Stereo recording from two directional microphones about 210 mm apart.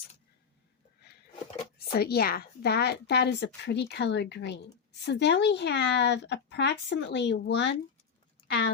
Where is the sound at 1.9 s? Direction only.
50° left (ahead or behind).